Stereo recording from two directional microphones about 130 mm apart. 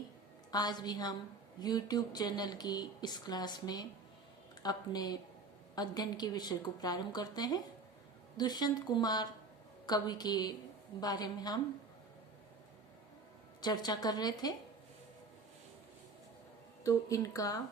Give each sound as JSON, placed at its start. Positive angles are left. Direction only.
{"t": 0.5, "sound": "speech", "side_deg": 30}
{"t": 13.6, "sound": "speech", "side_deg": 30}
{"t": 16.8, "sound": "speech", "side_deg": 25}